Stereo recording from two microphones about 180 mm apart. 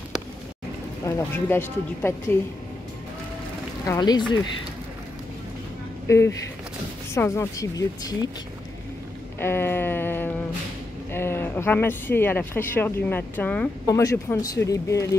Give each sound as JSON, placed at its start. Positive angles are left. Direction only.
{"t": 1.0, "sound": "speech", "side_deg": 15}
{"t": 3.8, "sound": "speech", "side_deg": 20}
{"t": 6.0, "sound": "speech", "side_deg": 15}
{"t": 9.4, "sound": "a sound", "side_deg": 10}
{"t": 11.1, "sound": "speech", "side_deg": 10}